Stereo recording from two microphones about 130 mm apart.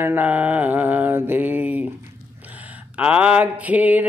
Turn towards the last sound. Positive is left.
turn(degrees=-10)  # may be behind; listen again after turning